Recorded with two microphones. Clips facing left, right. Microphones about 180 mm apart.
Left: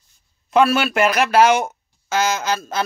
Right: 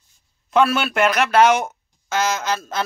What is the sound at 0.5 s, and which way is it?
Speech, centre (ahead or behind).